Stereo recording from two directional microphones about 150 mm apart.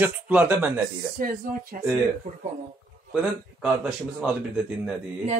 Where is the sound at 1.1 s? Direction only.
70° right (ahead or behind).